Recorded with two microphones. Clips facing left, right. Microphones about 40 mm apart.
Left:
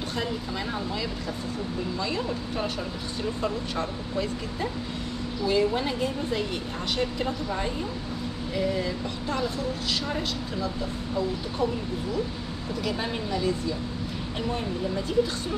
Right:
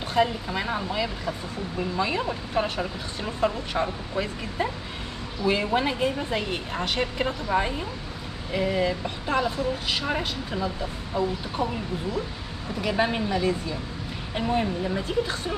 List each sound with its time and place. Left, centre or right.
0.1 s a woman's voice: right
12.8 s a woman's voice: right